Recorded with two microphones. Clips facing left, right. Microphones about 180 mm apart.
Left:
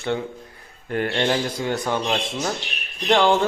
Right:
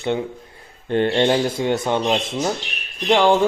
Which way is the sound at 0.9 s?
25° right (ahead or behind).